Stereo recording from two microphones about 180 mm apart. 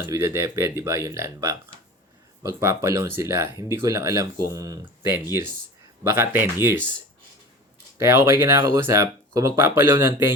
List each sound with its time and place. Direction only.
0.0 s speech: 15° right (ahead or behind)
7.9 s speech: 15° right (ahead or behind)